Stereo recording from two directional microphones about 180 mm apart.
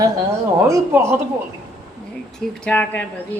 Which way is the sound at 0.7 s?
15° right (ahead or behind).